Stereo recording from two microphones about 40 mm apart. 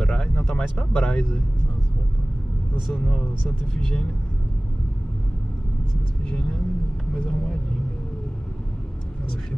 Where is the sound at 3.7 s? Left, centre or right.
Centre.